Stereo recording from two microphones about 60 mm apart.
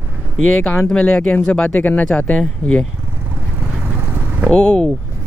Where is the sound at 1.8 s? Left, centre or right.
Left.